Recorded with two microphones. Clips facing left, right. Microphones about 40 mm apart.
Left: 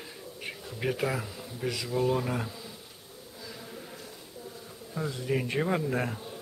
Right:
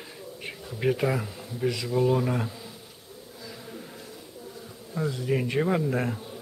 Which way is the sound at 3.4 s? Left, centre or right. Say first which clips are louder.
Right 2 dB; centre.